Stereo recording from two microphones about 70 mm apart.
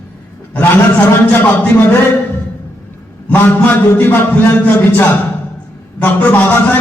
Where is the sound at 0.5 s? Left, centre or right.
Left.